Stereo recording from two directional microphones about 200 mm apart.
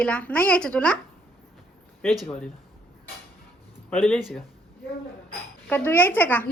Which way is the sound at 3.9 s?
5° left (ahead or behind).